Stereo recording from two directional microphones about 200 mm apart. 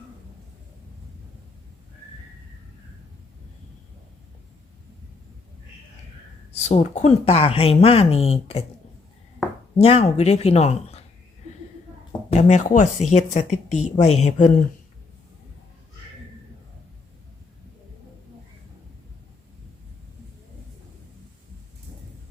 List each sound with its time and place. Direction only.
6.5 s speech: 35° left (ahead or behind)
9.7 s speech: 30° left (ahead or behind)
12.3 s speech: 35° left (ahead or behind)